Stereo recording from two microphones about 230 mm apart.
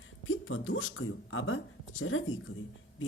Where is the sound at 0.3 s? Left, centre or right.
Left.